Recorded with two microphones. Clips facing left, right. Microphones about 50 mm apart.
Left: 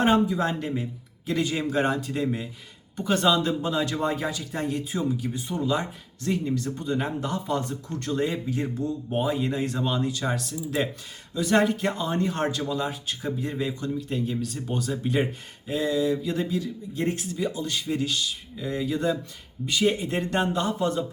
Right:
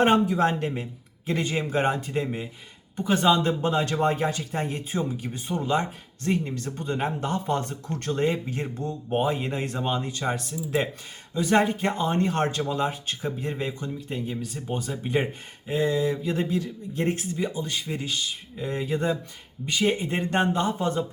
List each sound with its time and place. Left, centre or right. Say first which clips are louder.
0.0 s speech: right 2 dB; right
2.9 s a man's voice: right 1 dB; centre
3.2 s speech: right 2 dB; right
3.6 s speech: right 2 dB; right
13.8 s speech: left 3 dB; centre; by 17.4 s right
17.4 s speech: left 2 dB; right
18.6 s speech: even; right